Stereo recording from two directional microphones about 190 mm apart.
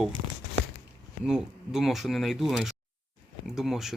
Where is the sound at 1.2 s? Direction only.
5° right (ahead or behind).